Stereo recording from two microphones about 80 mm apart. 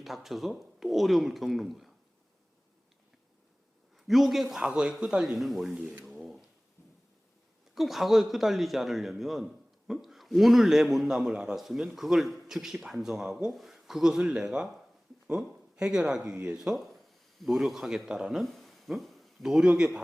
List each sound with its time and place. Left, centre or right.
0.0 s a man's voice: centre
3.9 s a man's voice: centre
6.1 s a sound: centre
7.8 s a man's voice: centre